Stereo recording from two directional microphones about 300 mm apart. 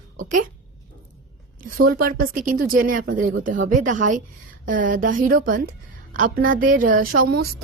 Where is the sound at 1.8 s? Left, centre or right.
Right.